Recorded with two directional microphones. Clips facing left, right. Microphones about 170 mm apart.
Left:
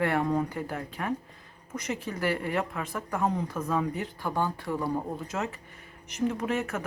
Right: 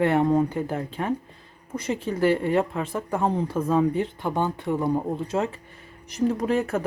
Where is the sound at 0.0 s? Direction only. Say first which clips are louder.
Right 6 dB; 25° right (ahead or behind).